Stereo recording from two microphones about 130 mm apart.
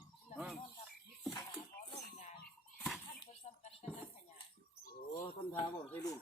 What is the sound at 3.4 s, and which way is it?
Music, 65° left (ahead or behind).